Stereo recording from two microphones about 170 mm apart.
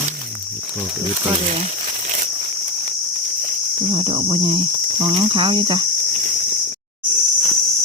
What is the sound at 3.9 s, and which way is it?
Cricket, 30° right (ahead or behind).